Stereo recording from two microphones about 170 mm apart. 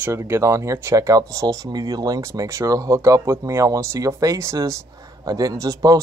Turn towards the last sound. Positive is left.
turn(degrees=-20)  # may be behind; listen again after turning